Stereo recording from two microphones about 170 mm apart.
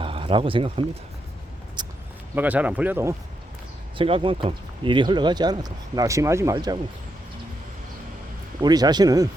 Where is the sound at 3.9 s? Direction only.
30° right (ahead or behind).